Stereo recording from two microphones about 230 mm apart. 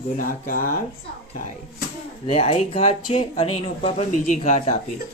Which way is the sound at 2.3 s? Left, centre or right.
Left.